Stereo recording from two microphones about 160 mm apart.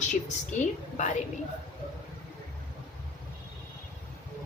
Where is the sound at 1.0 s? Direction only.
50° left (ahead or behind).